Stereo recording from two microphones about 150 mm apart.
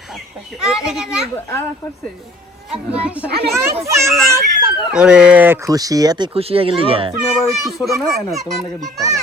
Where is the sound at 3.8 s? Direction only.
20° right (ahead or behind).